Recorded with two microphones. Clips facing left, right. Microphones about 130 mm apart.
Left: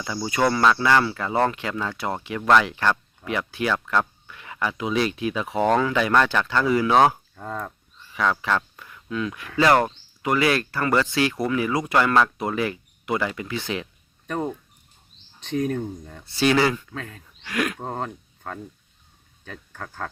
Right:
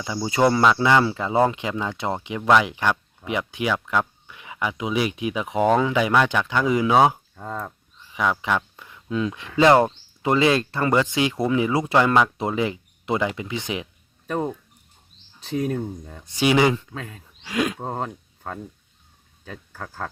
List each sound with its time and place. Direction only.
0.0 s speech: 20° right (ahead or behind)
8.0 s speech: 15° right (ahead or behind)
15.4 s speech: 25° right (ahead or behind)
15.8 s speech: 10° right (ahead or behind)
19.7 s speech: 10° right (ahead or behind)